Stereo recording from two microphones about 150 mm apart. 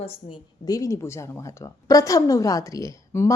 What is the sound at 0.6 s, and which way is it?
A woman's voice, 25° left (ahead or behind).